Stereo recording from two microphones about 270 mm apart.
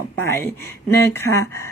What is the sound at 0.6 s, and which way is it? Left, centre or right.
A woman's voice, centre.